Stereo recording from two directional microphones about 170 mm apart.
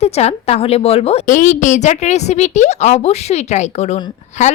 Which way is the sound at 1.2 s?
50° left (ahead or behind).